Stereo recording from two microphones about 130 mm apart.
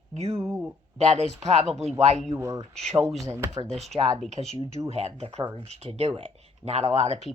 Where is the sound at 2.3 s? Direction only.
25° right (ahead or behind).